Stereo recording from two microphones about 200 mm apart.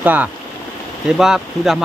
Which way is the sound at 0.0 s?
10° right (ahead or behind).